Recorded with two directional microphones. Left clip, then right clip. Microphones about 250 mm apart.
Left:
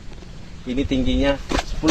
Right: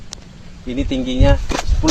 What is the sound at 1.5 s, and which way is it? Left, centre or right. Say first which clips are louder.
Speech: right 2 dB; right.